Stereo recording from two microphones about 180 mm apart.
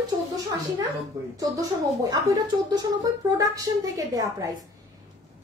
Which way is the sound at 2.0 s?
20° right (ahead or behind).